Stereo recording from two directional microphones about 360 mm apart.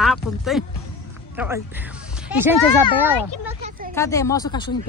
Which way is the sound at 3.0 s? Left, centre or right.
Centre.